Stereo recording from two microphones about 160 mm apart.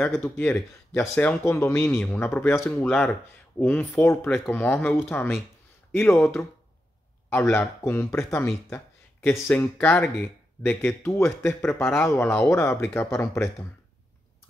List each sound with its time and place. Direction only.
0.0 s speech: 15° left (ahead or behind)